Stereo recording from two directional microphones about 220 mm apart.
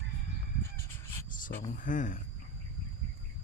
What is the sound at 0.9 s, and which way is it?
Chicken, 10° left (ahead or behind).